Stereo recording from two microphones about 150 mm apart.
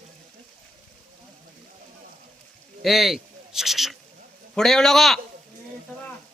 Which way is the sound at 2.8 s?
Centre (ahead or behind).